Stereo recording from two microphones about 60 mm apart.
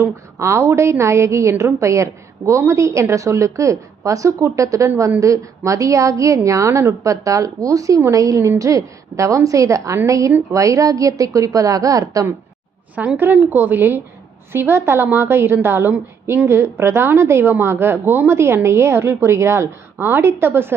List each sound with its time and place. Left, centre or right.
0.0 s a woman's voice: right
13.0 s a woman's voice: right